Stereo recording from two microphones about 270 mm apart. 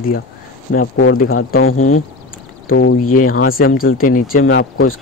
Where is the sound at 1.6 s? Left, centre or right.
Left.